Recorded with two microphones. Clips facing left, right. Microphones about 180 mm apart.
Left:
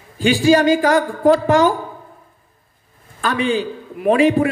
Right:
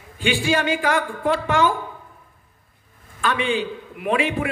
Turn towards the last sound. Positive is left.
turn(degrees=40)  # may be behind; listen again after turning